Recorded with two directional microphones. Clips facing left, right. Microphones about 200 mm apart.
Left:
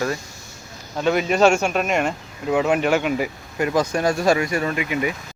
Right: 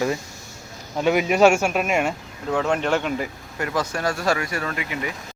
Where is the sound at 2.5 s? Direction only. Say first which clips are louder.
Left 3 dB; 10° left (ahead or behind).